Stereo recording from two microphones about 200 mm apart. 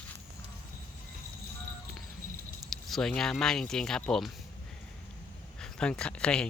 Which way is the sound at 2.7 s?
Centre (ahead or behind).